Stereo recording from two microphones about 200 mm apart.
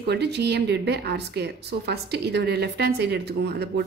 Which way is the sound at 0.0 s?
55° right (ahead or behind).